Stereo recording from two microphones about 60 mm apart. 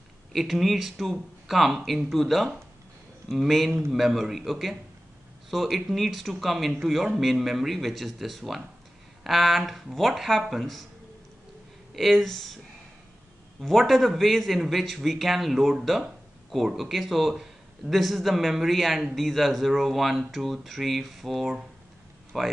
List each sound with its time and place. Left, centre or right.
0.3 s a man's voice: centre
11.9 s a man's voice: centre
13.6 s a man's voice: centre